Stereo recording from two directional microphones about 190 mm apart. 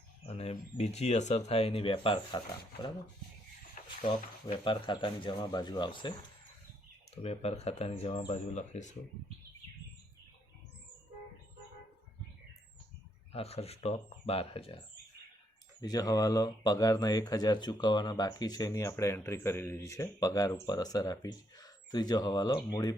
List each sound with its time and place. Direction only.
0.3 s speech: 35° left (ahead or behind)
4.5 s speech: 25° left (ahead or behind)
7.2 s speech: 35° left (ahead or behind)
8.5 s speech: 40° left (ahead or behind)
13.3 s speech: 30° left (ahead or behind)
15.8 s speech: 20° left (ahead or behind)